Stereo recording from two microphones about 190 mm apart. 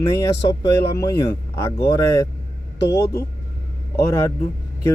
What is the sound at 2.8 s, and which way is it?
Speech, 60° left (ahead or behind).